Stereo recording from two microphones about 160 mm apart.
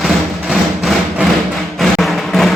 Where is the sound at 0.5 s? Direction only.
Centre (ahead or behind).